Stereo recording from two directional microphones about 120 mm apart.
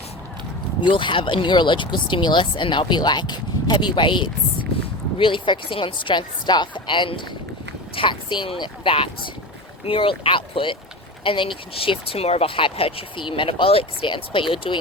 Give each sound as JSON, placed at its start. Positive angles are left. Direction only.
{"t": 0.8, "sound": "speech", "side_deg": 40}